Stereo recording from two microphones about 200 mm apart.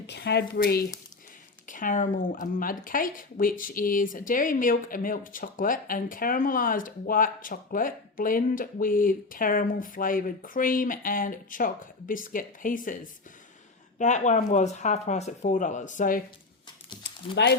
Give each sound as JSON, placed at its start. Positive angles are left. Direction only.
{"t": 0.1, "sound": "speech", "side_deg": 55}
{"t": 14.0, "sound": "speech", "side_deg": 35}
{"t": 17.0, "sound": "a sound", "side_deg": 60}